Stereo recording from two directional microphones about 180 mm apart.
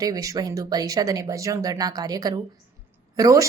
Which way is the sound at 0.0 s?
20° right (ahead or behind).